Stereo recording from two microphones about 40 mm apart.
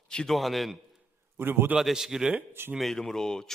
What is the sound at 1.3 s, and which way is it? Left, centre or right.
Speech, right.